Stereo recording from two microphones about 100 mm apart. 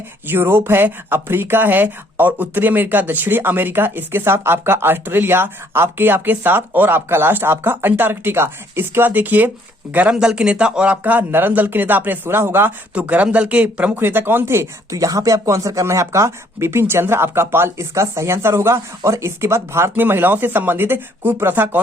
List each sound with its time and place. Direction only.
0.3 s speech: 25° right (ahead or behind)